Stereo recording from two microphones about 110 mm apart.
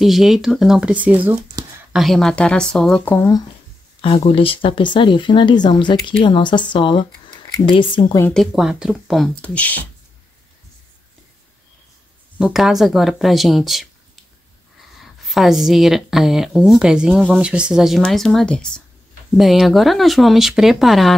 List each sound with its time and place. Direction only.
0.0 s speech: centre (ahead or behind)
1.9 s speech: centre (ahead or behind)
3.1 s speech: 25° left (ahead or behind)
4.2 s speech: 60° left (ahead or behind)
8.3 s speech: centre (ahead or behind)
9.4 s speech: 15° left (ahead or behind)
12.4 s speech: 5° right (ahead or behind)
15.0 s a woman's voice: centre (ahead or behind)